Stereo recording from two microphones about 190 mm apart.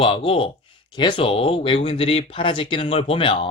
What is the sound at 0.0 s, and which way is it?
Speech, 25° left (ahead or behind).